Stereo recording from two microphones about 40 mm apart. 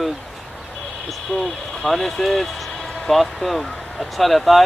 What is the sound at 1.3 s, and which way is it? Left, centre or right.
Speech, left.